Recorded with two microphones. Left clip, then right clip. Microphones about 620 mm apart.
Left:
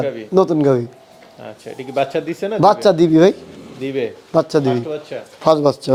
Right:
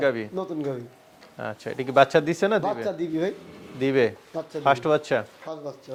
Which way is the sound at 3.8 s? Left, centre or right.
Right.